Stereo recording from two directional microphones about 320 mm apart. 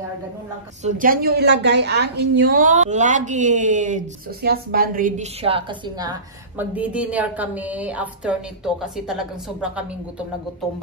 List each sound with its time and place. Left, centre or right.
0.8 s a woman's voice: right; by 9.8 s centre